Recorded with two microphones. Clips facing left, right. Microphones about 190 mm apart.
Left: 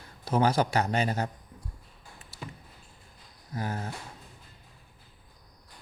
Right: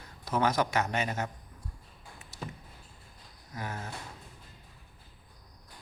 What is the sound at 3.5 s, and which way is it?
Speech, 35° left (ahead or behind).